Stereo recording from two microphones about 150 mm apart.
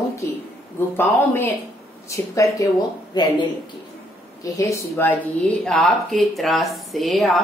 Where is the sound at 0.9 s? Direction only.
15° left (ahead or behind).